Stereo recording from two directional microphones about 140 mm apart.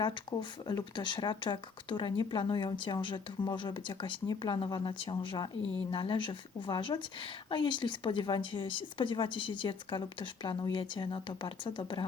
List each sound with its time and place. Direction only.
0.0 s speech: 30° left (ahead or behind)